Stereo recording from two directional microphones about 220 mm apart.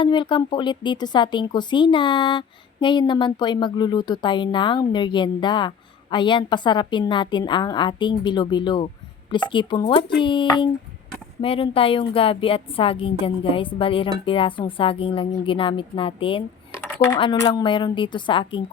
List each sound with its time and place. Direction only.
0.0 s speech: 20° left (ahead or behind)